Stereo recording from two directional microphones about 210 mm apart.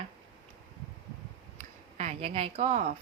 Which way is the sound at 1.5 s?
35° right (ahead or behind).